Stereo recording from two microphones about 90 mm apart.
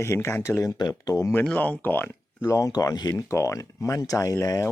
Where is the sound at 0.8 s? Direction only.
45° left (ahead or behind).